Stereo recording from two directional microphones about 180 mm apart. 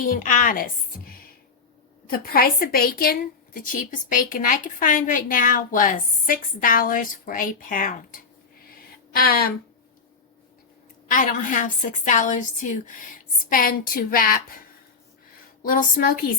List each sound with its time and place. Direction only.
0.0 s a woman's voice: 45° left (ahead or behind)
11.1 s a woman's voice: 45° left (ahead or behind)
15.6 s a woman's voice: 50° left (ahead or behind)